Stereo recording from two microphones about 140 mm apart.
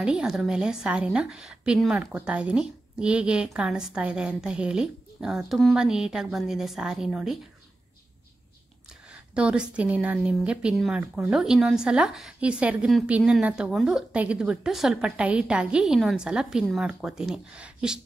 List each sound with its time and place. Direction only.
0.0 s a woman's voice: 5° right (ahead or behind)
9.3 s speech: 5° right (ahead or behind)